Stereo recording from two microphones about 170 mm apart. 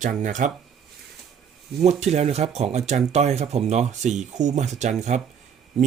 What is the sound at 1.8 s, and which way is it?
Speech, 40° right (ahead or behind).